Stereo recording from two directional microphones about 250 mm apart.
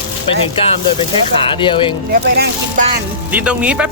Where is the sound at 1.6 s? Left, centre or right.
Centre.